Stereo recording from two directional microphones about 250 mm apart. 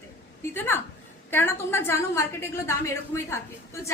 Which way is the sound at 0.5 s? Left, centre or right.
Centre.